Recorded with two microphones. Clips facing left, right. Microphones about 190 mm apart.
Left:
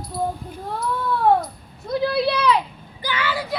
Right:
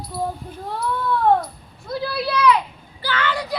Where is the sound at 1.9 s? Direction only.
20° left (ahead or behind).